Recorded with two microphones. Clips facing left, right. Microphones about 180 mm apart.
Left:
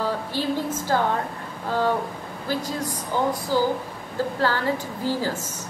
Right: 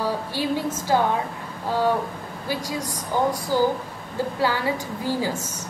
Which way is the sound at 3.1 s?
15° right (ahead or behind).